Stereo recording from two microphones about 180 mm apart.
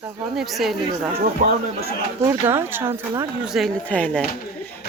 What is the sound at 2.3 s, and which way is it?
Speech, 10° right (ahead or behind).